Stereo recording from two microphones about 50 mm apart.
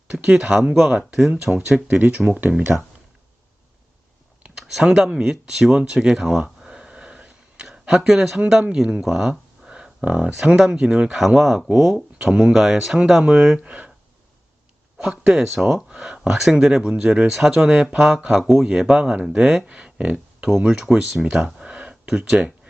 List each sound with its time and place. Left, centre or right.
0.3 s speech: centre
0.9 s speech: centre
4.5 s speech: centre
6.6 s a sound: centre
8.7 s speech: centre
9.6 s a sound: centre
10.1 s speech: centre
12.3 s speech: centre
13.6 s speech: right
14.9 s speech: centre
15.4 s speech: centre
19.6 s speech: right